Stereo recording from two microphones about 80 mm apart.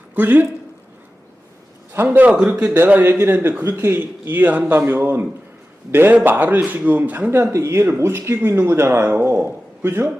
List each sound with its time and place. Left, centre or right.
0.1 s speech: right
2.0 s a man's voice: centre